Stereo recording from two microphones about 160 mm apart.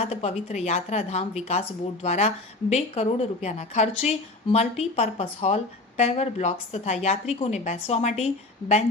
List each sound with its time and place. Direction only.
0.0 s a woman's voice: 40° left (ahead or behind)